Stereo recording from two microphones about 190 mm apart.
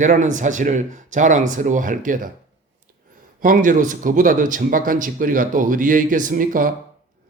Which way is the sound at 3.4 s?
45° right (ahead or behind).